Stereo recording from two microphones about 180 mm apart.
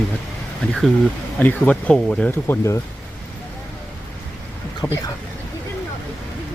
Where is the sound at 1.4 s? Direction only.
5° left (ahead or behind).